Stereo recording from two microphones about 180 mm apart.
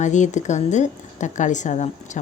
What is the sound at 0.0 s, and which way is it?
A woman's voice, 40° left (ahead or behind).